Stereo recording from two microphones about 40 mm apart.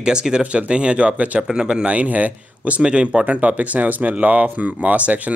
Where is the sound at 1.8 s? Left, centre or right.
Right.